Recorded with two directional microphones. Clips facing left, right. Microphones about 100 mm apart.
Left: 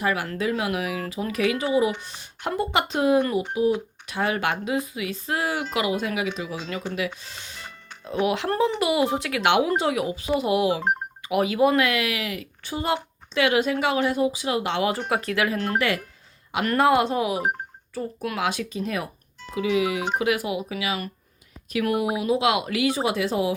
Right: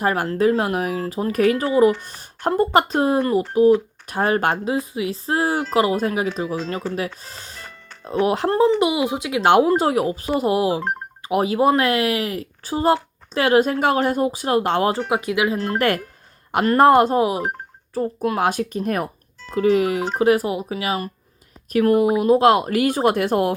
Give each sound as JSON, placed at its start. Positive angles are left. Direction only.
{"t": 0.0, "sound": "speech", "side_deg": -40}
{"t": 7.2, "sound": "music", "side_deg": -40}
{"t": 8.2, "sound": "speech", "side_deg": -40}
{"t": 8.4, "sound": "speech", "side_deg": -30}
{"t": 8.9, "sound": "speech", "side_deg": -15}
{"t": 9.4, "sound": "speech", "side_deg": -40}
{"t": 15.1, "sound": "speech", "side_deg": -15}
{"t": 16.6, "sound": "speech", "side_deg": -40}